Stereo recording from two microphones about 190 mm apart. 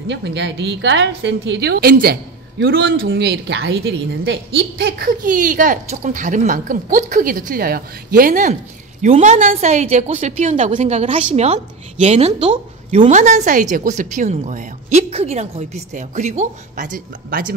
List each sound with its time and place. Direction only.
0.1 s a woman's voice: 70° right (ahead or behind); by 17.5 s 45° right (ahead or behind)